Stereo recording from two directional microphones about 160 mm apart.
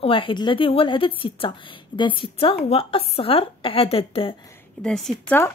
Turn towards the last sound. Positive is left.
turn(degrees=5)  # may be behind; listen again after turning